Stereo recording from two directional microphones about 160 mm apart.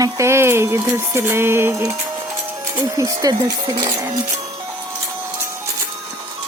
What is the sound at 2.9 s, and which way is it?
Speech, 20° right (ahead or behind).